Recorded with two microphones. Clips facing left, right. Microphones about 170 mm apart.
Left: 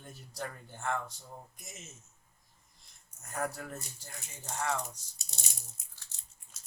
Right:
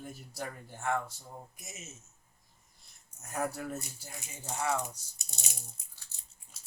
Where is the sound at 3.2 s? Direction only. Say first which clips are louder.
Right 2 dB; 5° right (ahead or behind).